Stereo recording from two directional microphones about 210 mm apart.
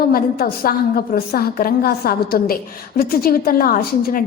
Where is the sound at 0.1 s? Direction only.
45° left (ahead or behind).